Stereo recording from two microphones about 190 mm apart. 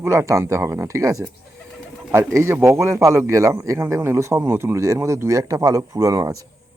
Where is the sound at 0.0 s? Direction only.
15° right (ahead or behind).